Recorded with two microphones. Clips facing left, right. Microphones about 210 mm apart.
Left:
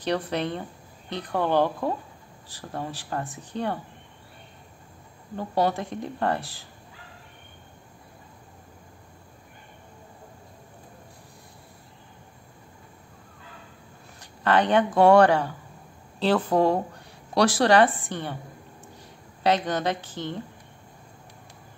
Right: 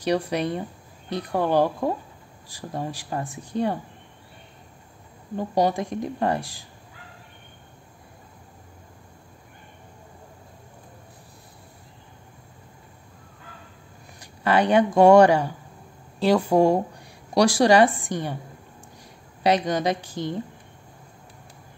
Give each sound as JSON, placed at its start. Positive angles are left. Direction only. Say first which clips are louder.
{"t": 0.0, "sound": "speech", "louder": "right 3 dB", "side_deg": -10}
{"t": 5.3, "sound": "speech", "louder": "right 2 dB", "side_deg": -15}
{"t": 14.2, "sound": "speech", "louder": "right 1 dB", "side_deg": -10}
{"t": 19.4, "sound": "speech", "louder": "right 2 dB", "side_deg": -15}